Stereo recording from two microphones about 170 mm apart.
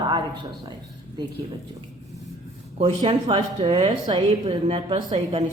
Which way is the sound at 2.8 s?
30° right (ahead or behind).